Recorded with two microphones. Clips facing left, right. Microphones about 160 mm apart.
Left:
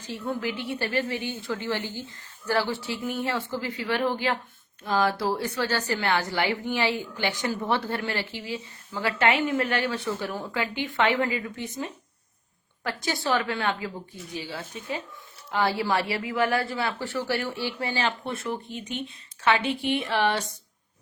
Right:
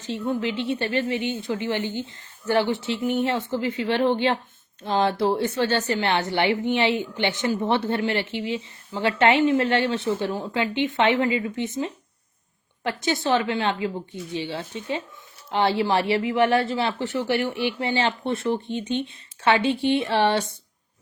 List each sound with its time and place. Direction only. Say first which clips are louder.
0.0 s a woman's voice: right 4 dB; 25° right (ahead or behind)